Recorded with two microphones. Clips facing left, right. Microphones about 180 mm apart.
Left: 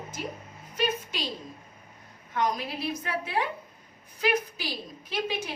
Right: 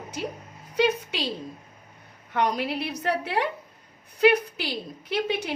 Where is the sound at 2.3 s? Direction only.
70° right (ahead or behind).